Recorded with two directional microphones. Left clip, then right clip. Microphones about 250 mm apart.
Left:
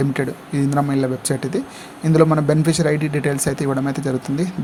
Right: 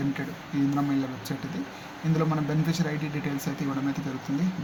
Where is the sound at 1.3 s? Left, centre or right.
Left.